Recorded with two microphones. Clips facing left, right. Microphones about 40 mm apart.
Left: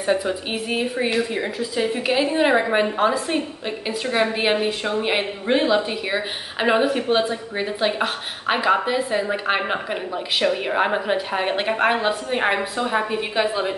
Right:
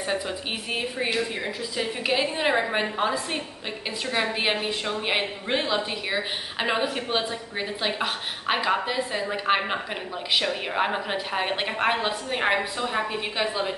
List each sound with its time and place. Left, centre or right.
0.0 s a woman's voice: centre